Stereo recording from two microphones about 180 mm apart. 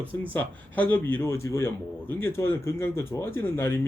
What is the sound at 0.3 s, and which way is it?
A man's voice, 10° left (ahead or behind).